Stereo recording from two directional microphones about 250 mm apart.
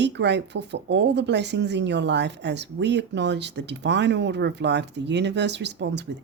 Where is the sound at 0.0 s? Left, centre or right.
Right.